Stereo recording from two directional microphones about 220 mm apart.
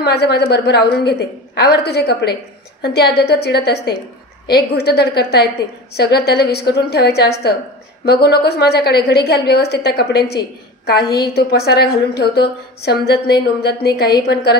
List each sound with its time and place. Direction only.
0.0 s a woman's voice: 45° left (ahead or behind)
11.3 s a woman's voice: 45° left (ahead or behind)